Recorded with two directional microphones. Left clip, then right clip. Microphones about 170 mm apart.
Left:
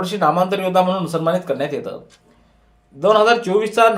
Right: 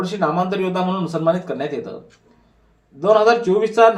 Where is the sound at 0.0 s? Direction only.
20° left (ahead or behind).